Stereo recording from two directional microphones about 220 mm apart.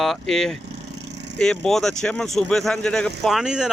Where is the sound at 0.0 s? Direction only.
Centre (ahead or behind).